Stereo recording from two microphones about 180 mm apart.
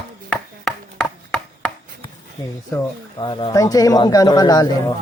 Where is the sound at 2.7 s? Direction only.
25° left (ahead or behind).